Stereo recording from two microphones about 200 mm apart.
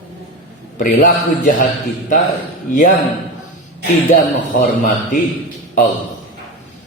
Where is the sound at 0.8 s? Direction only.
40° left (ahead or behind).